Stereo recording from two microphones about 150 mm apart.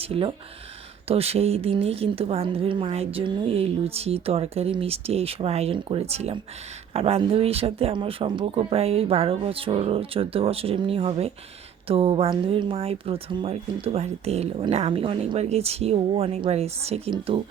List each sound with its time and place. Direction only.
0.0 s a woman's voice: 40° right (ahead or behind)